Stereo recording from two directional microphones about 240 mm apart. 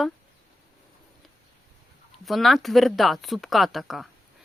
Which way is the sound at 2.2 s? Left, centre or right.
Centre.